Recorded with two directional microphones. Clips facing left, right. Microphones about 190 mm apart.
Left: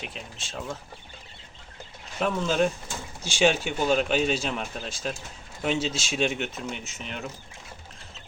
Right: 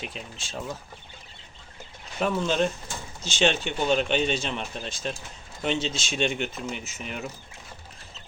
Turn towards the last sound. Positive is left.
turn(degrees=-5)  # may be behind; listen again after turning